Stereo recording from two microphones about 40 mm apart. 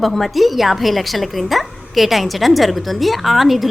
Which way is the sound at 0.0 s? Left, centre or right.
Centre.